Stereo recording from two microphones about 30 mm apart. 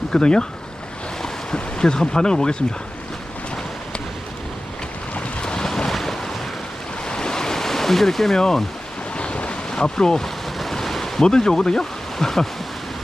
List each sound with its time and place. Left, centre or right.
0.1 s speech: left
1.8 s speech: left
5.4 s boat: left
5.6 s boat: left
7.1 s waves: left
9.1 s waves: left
9.8 s speech: left
10.6 s waves: centre
11.2 s speech: left